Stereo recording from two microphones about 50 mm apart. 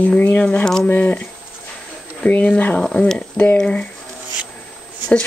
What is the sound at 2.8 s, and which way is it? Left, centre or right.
Speech, centre.